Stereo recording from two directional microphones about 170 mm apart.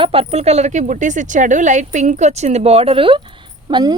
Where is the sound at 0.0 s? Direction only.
35° right (ahead or behind).